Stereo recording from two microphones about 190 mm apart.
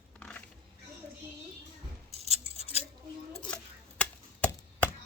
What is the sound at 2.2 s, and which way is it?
Scissors, 35° left (ahead or behind).